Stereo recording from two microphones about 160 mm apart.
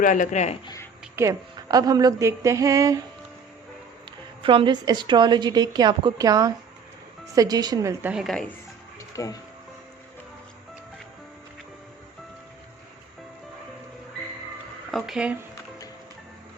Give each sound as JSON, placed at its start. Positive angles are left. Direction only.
{"t": 0.0, "sound": "speech", "side_deg": 55}
{"t": 0.6, "sound": "speech", "side_deg": 25}
{"t": 1.1, "sound": "a woman's voice", "side_deg": -20}
{"t": 4.4, "sound": "a woman's voice", "side_deg": -30}
{"t": 8.1, "sound": "speech", "side_deg": 0}
{"t": 9.0, "sound": "music", "side_deg": 20}
{"t": 14.8, "sound": "speech", "side_deg": 0}